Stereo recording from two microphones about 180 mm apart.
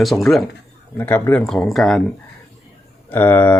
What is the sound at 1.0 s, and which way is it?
Speech, 10° left (ahead or behind).